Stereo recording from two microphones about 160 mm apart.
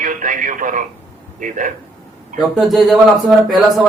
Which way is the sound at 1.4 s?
55° right (ahead or behind).